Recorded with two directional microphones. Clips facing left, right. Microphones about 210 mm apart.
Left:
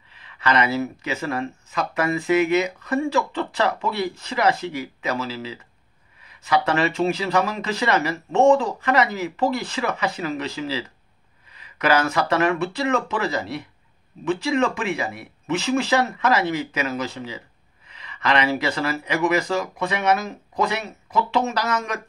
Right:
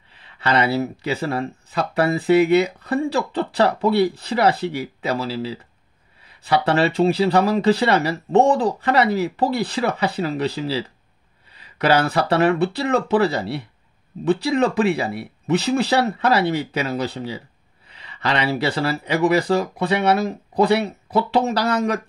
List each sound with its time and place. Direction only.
0.1 s speech: 35° right (ahead or behind)